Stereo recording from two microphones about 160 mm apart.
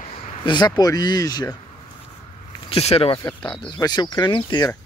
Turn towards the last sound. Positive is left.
turn(degrees=25)  # may be behind; listen again after turning